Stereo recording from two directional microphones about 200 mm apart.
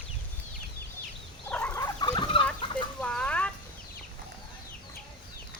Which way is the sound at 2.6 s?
25° left (ahead or behind).